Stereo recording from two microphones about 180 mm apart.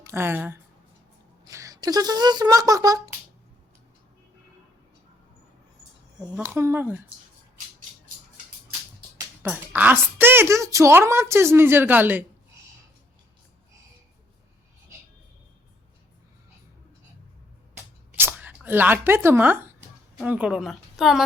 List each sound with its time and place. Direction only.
0.0 s speech: 15° right (ahead or behind)
6.3 s a woman's voice: 15° right (ahead or behind)
9.1 s a woman's voice: 10° right (ahead or behind)
18.2 s a sound: 10° right (ahead or behind)
20.1 s a woman's voice: 5° right (ahead or behind)